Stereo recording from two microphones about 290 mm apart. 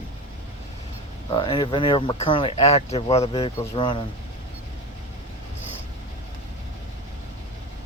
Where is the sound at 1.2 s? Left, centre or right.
Centre.